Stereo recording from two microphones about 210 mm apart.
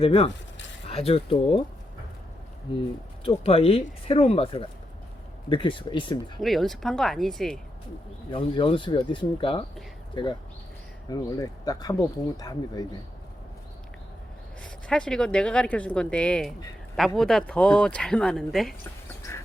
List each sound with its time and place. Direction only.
0.0 s speech: 25° left (ahead or behind)
2.7 s speech: 25° left (ahead or behind)
6.4 s speech: centre (ahead or behind)
8.3 s speech: 25° left (ahead or behind)
11.1 s speech: 20° left (ahead or behind)
14.8 s speech: 5° left (ahead or behind)